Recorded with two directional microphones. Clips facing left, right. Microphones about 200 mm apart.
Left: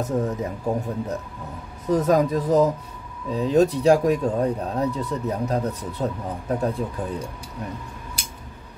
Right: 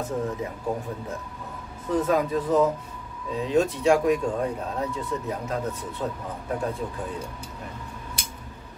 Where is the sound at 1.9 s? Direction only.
40° left (ahead or behind).